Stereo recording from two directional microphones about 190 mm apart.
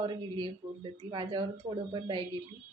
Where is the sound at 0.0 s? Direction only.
25° right (ahead or behind).